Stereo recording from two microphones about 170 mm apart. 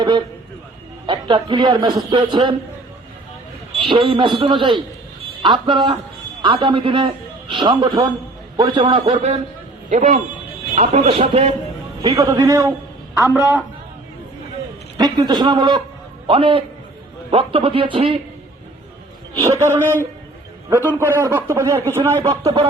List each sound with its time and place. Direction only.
1.0 s a man's voice: 30° right (ahead or behind)
3.8 s a man's voice: 30° right (ahead or behind)
12.0 s a man's voice: 20° right (ahead or behind)
14.9 s a man's voice: 25° right (ahead or behind)
19.4 s speech: 15° right (ahead or behind)
21.2 s speech: 15° right (ahead or behind)